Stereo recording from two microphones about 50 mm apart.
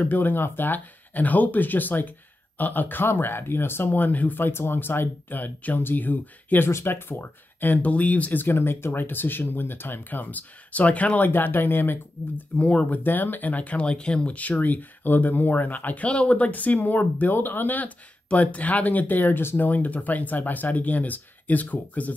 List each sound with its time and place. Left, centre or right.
0.0 s speech: left
6.7 s speech: left
12.5 s speech: left
13.0 s speech: left